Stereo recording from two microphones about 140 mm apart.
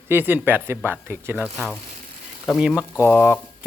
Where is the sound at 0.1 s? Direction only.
15° right (ahead or behind).